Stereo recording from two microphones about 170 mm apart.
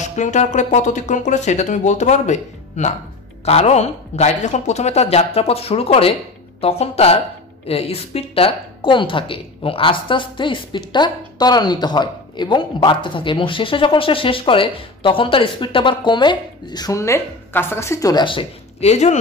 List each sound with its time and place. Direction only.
0.0 s a man's voice: 45° left (ahead or behind)